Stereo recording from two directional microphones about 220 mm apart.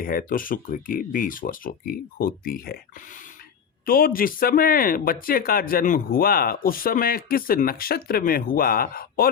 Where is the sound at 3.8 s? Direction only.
40° left (ahead or behind).